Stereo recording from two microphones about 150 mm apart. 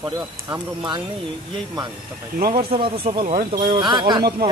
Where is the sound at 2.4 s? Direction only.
80° right.